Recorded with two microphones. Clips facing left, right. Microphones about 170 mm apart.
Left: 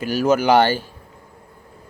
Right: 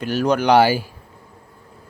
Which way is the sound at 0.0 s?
5° left (ahead or behind).